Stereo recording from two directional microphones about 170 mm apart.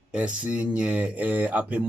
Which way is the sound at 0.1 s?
5° right (ahead or behind).